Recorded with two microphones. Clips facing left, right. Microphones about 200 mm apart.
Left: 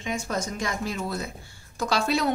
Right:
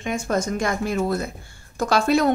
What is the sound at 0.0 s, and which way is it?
Speech, 50° right (ahead or behind).